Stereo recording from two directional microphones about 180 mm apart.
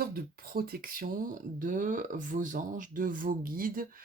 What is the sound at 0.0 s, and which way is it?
Speech, 55° right (ahead or behind).